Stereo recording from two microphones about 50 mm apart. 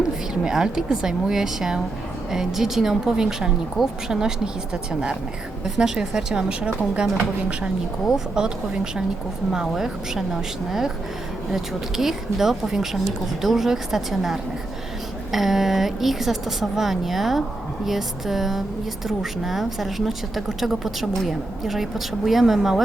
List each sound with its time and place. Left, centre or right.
0.4 s speech: centre
3.8 s a woman's voice: centre
4.1 s speech: centre
8.1 s a woman's voice: centre